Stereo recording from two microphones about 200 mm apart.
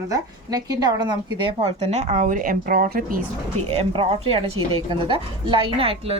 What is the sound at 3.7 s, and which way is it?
A woman's voice, 30° right (ahead or behind).